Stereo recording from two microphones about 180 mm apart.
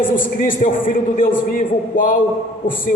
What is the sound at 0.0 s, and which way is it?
A man's voice, 50° left (ahead or behind).